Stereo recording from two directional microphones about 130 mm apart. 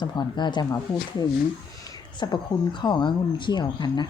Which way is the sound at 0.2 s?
35° left (ahead or behind).